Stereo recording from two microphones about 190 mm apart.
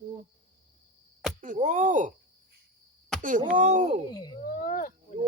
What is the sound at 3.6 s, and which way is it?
Speech, 40° right (ahead or behind).